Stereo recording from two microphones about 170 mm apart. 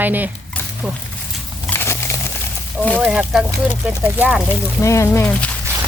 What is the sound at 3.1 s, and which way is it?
Speech, 5° right (ahead or behind).